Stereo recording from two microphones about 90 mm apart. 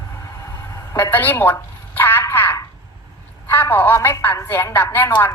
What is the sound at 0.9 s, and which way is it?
A woman's voice, 20° left (ahead or behind).